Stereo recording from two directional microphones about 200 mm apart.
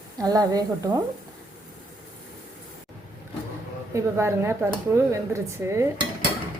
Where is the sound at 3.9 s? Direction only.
15° right (ahead or behind).